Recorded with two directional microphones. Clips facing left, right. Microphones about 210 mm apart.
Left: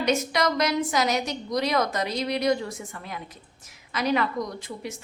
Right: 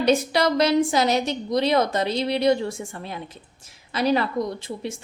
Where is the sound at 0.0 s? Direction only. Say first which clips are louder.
Right 4 dB; 30° right (ahead or behind).